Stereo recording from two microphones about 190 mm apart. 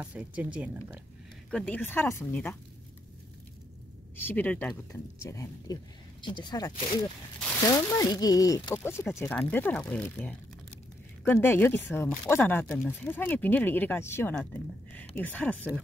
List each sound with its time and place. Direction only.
0.0 s speech: 10° right (ahead or behind)
1.5 s speech: 10° left (ahead or behind)
4.2 s speech: 10° left (ahead or behind)